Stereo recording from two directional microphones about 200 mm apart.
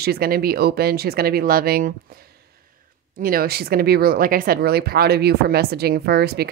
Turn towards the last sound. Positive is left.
turn(degrees=-55)  # may be behind; listen again after turning